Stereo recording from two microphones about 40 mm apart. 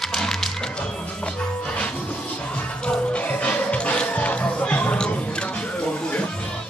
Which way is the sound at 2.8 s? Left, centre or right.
Left.